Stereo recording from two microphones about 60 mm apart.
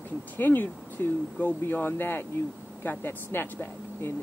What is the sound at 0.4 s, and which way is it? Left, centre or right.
Speech, left.